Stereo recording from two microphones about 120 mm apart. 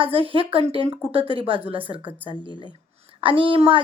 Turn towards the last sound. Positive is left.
turn(degrees=-45)  # may be behind; listen again after turning